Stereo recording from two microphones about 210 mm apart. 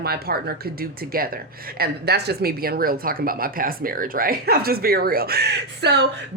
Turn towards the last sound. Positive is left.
turn(degrees=-50)  # may be behind; listen again after turning